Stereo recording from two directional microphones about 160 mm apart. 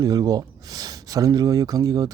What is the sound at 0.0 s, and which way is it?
Speech, 25° right (ahead or behind).